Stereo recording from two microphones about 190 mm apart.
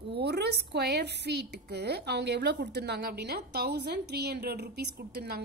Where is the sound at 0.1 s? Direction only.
60° right (ahead or behind).